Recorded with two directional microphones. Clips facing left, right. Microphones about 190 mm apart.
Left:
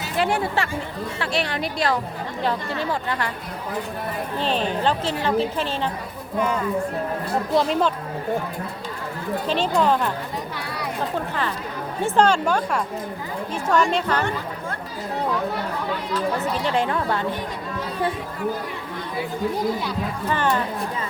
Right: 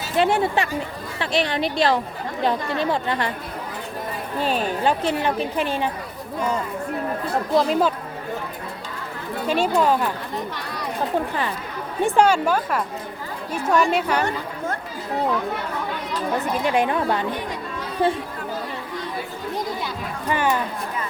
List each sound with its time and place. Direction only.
0.2 s speech: 25° right (ahead or behind)
4.4 s a woman's voice: 10° right (ahead or behind)
7.5 s speech: 5° right (ahead or behind)
9.5 s a woman's voice: 10° right (ahead or behind)
12.0 s a woman's voice: 10° right (ahead or behind)
16.6 s a woman's voice: 15° right (ahead or behind)
20.2 s a woman's voice: 10° right (ahead or behind)